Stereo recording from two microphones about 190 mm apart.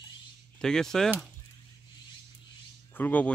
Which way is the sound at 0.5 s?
5° left (ahead or behind).